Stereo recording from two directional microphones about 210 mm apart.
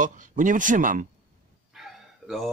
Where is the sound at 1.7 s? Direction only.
Centre (ahead or behind).